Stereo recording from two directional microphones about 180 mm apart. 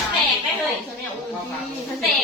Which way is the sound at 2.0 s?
Centre (ahead or behind).